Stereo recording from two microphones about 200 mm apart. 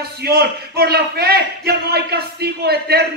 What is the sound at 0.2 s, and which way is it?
A man's voice, 55° right (ahead or behind).